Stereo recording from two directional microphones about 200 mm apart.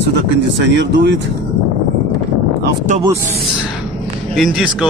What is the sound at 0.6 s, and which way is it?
Speech, 60° right (ahead or behind).